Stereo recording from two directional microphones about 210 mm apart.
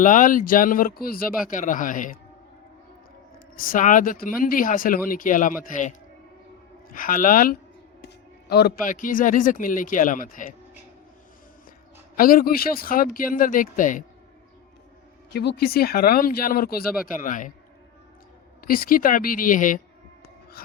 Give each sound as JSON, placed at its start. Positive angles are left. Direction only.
{"t": 0.0, "sound": "speech", "side_deg": 40}
{"t": 3.3, "sound": "speech", "side_deg": 40}
{"t": 6.9, "sound": "a man's voice", "side_deg": 40}
{"t": 12.1, "sound": "speech", "side_deg": 45}
{"t": 15.3, "sound": "speech", "side_deg": 50}
{"t": 18.7, "sound": "speech", "side_deg": 45}